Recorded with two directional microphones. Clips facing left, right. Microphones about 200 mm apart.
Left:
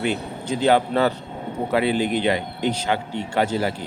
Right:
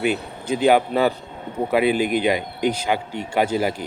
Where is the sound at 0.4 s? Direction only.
10° right (ahead or behind).